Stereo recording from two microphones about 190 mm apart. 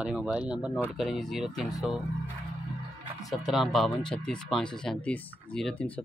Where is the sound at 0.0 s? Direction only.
5° right (ahead or behind).